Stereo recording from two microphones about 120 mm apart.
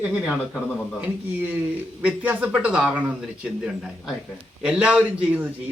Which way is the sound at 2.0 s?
10° right (ahead or behind).